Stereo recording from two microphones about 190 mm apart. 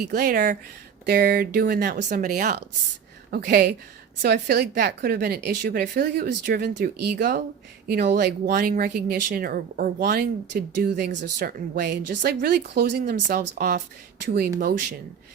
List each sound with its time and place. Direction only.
0.1 s speech: 55° right (ahead or behind)
11.3 s speech: 50° right (ahead or behind)